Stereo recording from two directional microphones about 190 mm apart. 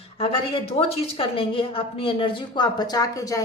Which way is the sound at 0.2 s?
30° left (ahead or behind).